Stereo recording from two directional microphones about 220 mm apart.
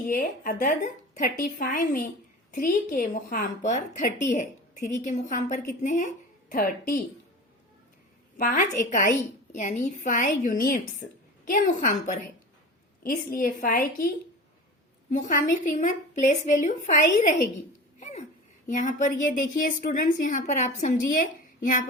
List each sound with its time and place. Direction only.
0.1 s a woman's voice: 40° left (ahead or behind)
8.4 s a woman's voice: 35° left (ahead or behind)
15.1 s a woman's voice: 35° left (ahead or behind)
18.7 s a woman's voice: 35° left (ahead or behind)